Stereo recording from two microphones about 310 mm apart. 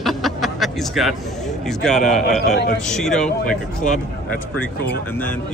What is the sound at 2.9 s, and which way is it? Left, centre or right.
Speech, centre.